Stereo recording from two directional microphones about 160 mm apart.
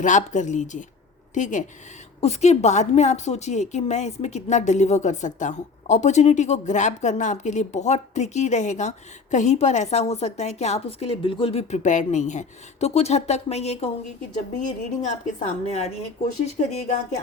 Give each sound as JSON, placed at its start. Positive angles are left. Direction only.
{"t": 0.0, "sound": "a woman's voice", "side_deg": 50}
{"t": 15.0, "sound": "a woman's voice", "side_deg": 45}